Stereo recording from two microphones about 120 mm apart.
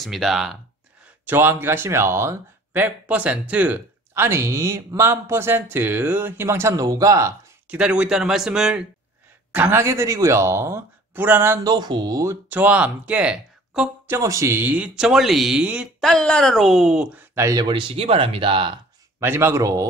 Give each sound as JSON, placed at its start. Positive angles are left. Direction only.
{"t": 0.0, "sound": "a woman's voice", "side_deg": 0}
{"t": 1.2, "sound": "speech", "side_deg": -15}
{"t": 7.6, "sound": "speech", "side_deg": -10}
{"t": 11.6, "sound": "speech", "side_deg": -35}
{"t": 12.4, "sound": "speech", "side_deg": -15}
{"t": 14.0, "sound": "speech", "side_deg": -25}
{"t": 16.0, "sound": "a woman's voice", "side_deg": 5}
{"t": 17.4, "sound": "speech", "side_deg": -25}
{"t": 17.6, "sound": "speech", "side_deg": -45}
{"t": 19.1, "sound": "speech", "side_deg": -20}